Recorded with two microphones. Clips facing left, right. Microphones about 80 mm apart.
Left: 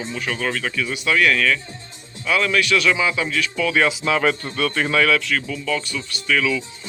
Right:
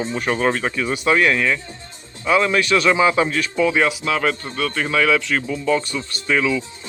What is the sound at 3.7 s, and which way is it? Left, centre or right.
Speech, centre.